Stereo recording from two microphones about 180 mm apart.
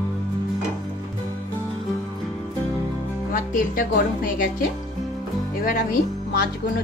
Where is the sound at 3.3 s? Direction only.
45° left (ahead or behind).